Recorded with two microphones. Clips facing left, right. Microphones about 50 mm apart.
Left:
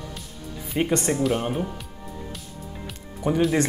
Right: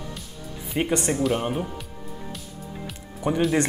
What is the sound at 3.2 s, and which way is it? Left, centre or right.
Speech, centre.